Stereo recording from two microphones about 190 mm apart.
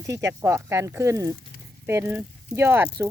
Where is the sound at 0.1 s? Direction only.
15° right (ahead or behind).